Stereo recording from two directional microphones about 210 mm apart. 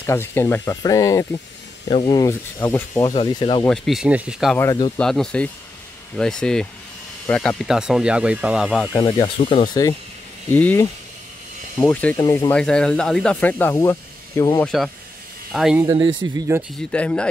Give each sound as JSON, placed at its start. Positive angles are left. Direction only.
{"t": 0.0, "sound": "speech", "side_deg": 10}
{"t": 3.1, "sound": "speech", "side_deg": 25}
{"t": 3.6, "sound": "speech", "side_deg": 0}
{"t": 4.6, "sound": "speech", "side_deg": 15}
{"t": 4.9, "sound": "speech", "side_deg": 5}
{"t": 8.9, "sound": "speech", "side_deg": 20}
{"t": 9.4, "sound": "speech", "side_deg": 30}
{"t": 10.5, "sound": "speech", "side_deg": 10}
{"t": 12.5, "sound": "speech", "side_deg": 5}
{"t": 14.6, "sound": "speech", "side_deg": 0}
{"t": 15.8, "sound": "speech", "side_deg": -20}
{"t": 16.9, "sound": "speech", "side_deg": 5}